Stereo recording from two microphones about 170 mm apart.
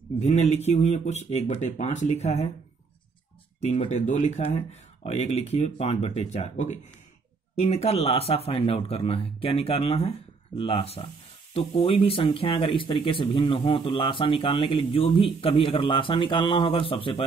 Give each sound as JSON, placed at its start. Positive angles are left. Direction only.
{"t": 0.2, "sound": "speech", "side_deg": 40}
{"t": 3.6, "sound": "speech", "side_deg": 40}